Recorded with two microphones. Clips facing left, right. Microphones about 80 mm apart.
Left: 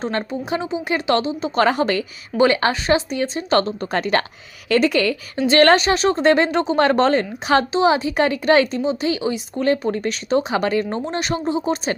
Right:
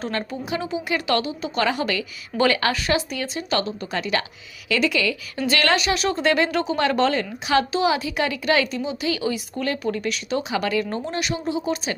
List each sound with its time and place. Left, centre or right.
0.0 s a woman's voice: left